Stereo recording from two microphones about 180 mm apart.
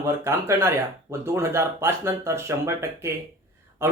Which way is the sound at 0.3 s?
15° right (ahead or behind).